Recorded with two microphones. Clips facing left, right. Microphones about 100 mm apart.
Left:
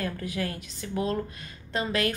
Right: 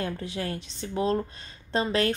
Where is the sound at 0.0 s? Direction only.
25° right (ahead or behind).